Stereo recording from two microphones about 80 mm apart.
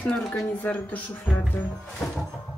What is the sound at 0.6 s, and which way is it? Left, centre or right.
Speech, centre.